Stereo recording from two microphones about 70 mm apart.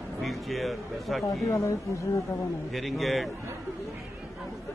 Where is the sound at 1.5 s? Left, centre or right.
Left.